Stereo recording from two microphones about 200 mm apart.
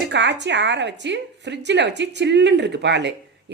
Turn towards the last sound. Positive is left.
turn(degrees=-60)  # may be behind; listen again after turning